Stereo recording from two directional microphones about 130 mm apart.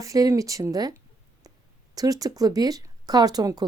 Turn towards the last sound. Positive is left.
turn(degrees=-30)  # may be behind; listen again after turning